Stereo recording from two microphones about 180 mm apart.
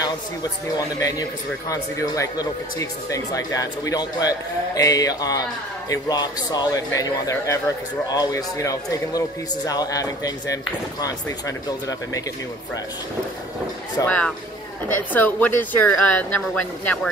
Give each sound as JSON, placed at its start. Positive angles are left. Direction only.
{"t": 0.0, "sound": "speech", "side_deg": 20}
{"t": 14.0, "sound": "speech", "side_deg": 5}